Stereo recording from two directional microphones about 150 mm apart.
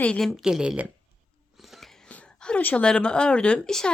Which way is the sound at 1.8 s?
5° left (ahead or behind).